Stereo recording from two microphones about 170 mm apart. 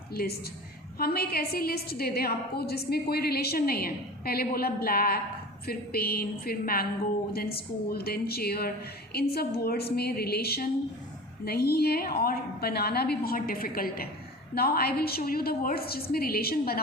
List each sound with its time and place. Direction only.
0.1 s a woman's voice: 65° left (ahead or behind)